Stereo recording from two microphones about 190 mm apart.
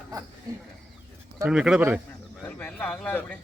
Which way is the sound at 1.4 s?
5° right (ahead or behind).